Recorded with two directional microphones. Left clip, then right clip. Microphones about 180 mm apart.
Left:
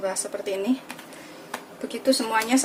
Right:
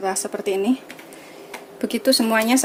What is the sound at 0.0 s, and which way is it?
Speech, 40° right (ahead or behind).